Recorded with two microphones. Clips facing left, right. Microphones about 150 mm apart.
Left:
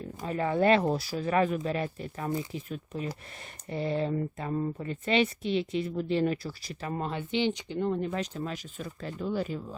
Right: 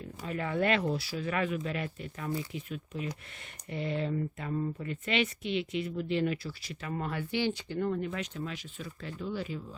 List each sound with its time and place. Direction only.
0.2 s speech: 35° left (ahead or behind)